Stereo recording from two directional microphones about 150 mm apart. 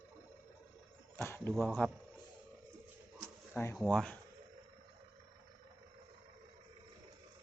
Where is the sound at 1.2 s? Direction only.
15° left (ahead or behind).